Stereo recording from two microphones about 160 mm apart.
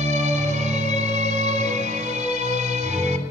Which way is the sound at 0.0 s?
45° right (ahead or behind).